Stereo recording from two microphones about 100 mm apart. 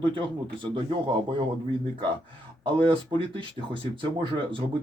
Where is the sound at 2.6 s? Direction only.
60° right (ahead or behind).